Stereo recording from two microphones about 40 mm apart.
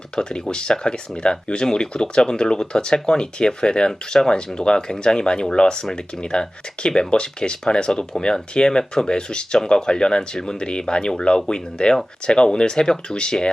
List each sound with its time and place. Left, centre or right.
0.2 s speech: left